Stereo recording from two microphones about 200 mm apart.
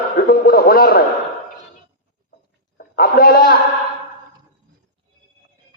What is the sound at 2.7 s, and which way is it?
Speech, 50° left (ahead or behind).